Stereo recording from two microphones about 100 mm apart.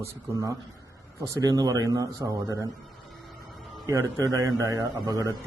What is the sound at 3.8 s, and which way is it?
A man's voice, 30° right (ahead or behind).